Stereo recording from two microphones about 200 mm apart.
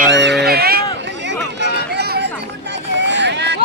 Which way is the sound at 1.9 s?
55° right (ahead or behind).